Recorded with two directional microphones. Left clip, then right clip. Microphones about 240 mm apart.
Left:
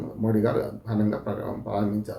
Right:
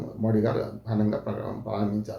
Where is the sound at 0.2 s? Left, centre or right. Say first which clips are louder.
Left 2 dB; centre.